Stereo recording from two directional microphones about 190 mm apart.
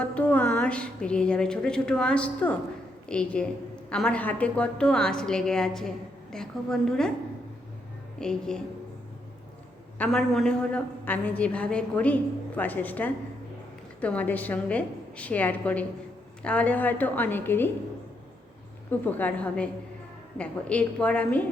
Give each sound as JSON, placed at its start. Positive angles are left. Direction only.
{"t": 0.0, "sound": "a woman's voice", "side_deg": 5}
{"t": 8.2, "sound": "a woman's voice", "side_deg": 5}
{"t": 10.0, "sound": "a woman's voice", "side_deg": 0}
{"t": 18.9, "sound": "a woman's voice", "side_deg": 10}